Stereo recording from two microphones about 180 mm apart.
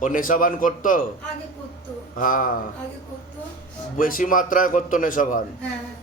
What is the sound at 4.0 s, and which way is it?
A man's voice, 50° left (ahead or behind).